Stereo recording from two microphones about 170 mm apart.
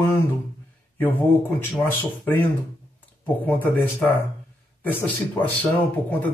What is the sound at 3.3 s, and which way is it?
Speech, 10° left (ahead or behind).